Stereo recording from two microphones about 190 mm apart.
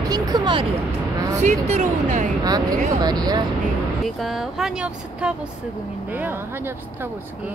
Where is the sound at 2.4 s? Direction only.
20° right (ahead or behind).